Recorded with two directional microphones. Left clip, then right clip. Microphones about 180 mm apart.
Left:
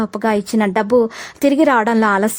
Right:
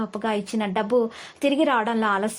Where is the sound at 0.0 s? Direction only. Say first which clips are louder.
Left 8 dB; 40° left (ahead or behind).